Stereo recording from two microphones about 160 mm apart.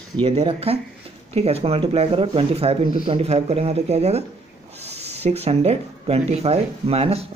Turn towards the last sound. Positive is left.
turn(degrees=-40)  # may be behind; listen again after turning